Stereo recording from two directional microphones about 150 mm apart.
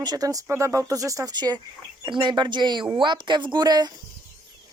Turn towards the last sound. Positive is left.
turn(degrees=-25)  # may be behind; listen again after turning